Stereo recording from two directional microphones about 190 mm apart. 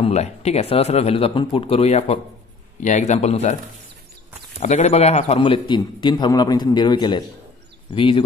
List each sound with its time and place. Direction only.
0.0 s speech: 35° left (ahead or behind)
4.6 s a man's voice: 35° left (ahead or behind)